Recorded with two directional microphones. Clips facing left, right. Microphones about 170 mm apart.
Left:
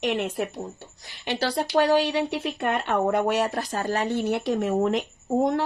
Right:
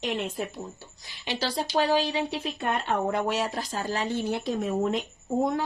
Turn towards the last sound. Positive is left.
turn(degrees=85)